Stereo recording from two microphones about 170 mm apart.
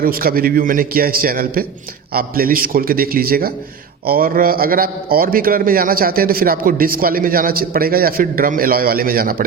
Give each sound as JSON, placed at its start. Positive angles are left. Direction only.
{"t": 0.0, "sound": "a man's voice", "side_deg": -60}